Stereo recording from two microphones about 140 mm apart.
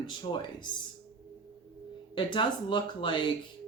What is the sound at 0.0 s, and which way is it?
Speech, 35° left (ahead or behind).